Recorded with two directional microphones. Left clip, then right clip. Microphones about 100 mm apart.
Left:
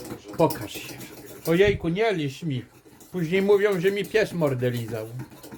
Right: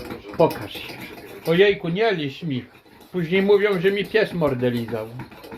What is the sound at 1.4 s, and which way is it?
Speech, 35° left (ahead or behind).